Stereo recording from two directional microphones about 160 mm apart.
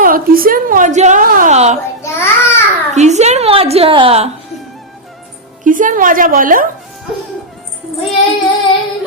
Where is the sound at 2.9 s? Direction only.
45° right (ahead or behind).